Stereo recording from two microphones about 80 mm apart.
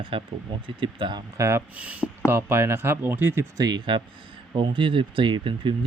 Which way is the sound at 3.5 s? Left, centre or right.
Right.